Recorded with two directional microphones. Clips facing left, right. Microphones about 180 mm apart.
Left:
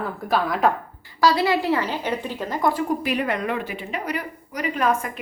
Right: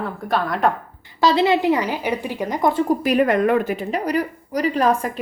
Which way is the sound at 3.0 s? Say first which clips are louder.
Right 7 dB; 45° right (ahead or behind).